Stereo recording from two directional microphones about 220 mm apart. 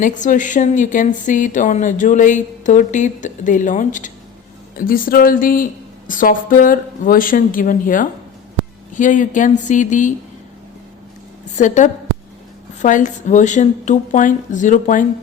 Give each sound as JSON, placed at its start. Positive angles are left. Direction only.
{"t": 0.0, "sound": "speech", "side_deg": 35}
{"t": 11.5, "sound": "speech", "side_deg": 35}